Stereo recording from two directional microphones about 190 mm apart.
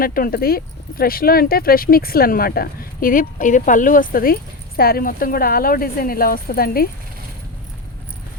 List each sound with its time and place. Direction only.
0.0 s speech: 50° left (ahead or behind)